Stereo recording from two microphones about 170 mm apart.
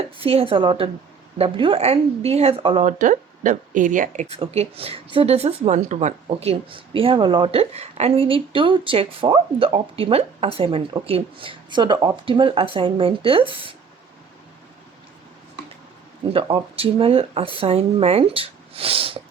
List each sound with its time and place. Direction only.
0.2 s speech: 35° right (ahead or behind)
3.0 s speech: 50° right (ahead or behind)
4.4 s speech: 35° right (ahead or behind)
16.3 s speech: 30° right (ahead or behind)